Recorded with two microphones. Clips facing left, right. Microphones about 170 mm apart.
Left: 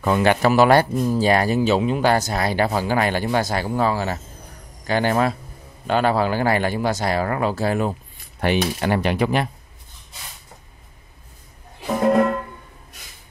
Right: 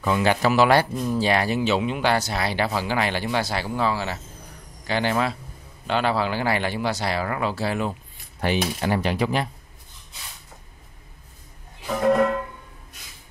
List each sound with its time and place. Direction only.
0.0 s speech: 50° left (ahead or behind)
8.4 s speech: 60° left (ahead or behind)